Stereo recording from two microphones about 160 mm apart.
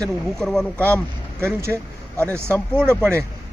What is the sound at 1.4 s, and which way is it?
Speech, 15° right (ahead or behind).